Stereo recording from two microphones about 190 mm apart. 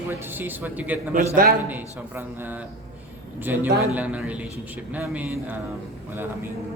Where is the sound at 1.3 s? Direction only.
50° right (ahead or behind).